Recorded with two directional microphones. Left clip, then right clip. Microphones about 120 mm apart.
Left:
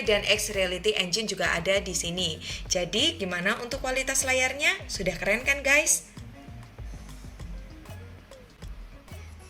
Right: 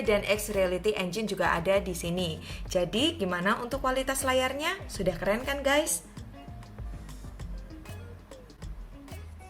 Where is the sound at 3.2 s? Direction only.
35° right (ahead or behind).